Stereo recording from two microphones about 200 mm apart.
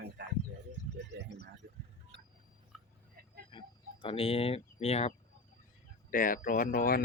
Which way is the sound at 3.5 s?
25° left (ahead or behind).